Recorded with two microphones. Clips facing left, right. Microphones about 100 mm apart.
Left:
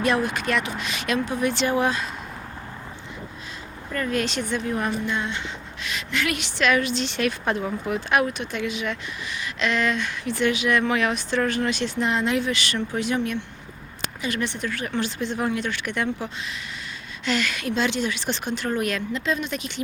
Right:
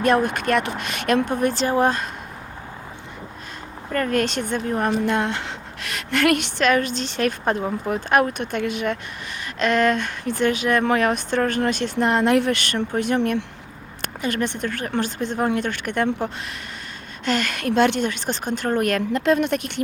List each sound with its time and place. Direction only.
0.0 s speech: 50° right (ahead or behind)
3.9 s speech: 50° right (ahead or behind)
5.0 s speech: 70° right (ahead or behind); by 16.0 s 50° right (ahead or behind)
17.2 s speech: 50° right (ahead or behind)